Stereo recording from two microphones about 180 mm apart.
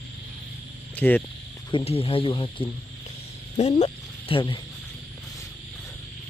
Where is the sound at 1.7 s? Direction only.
30° left (ahead or behind).